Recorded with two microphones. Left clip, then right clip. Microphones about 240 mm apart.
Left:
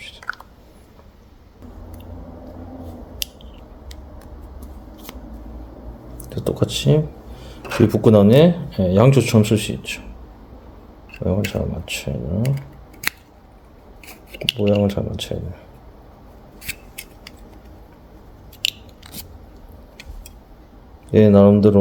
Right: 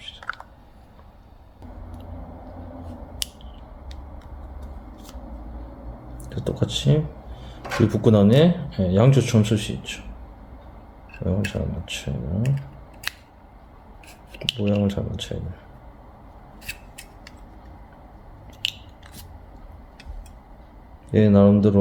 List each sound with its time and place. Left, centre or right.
3.2 s scissors: centre
6.2 s speech: left
11.2 s speech: left
14.1 s speech: centre
16.6 s scissors: left
18.6 s scissors: centre
21.1 s speech: left